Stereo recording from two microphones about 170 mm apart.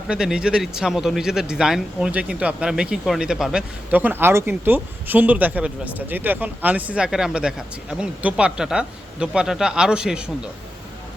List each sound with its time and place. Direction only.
0.1 s speech: 5° right (ahead or behind)